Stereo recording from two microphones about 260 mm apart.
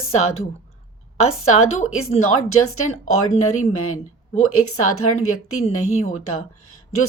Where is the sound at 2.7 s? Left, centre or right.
Left.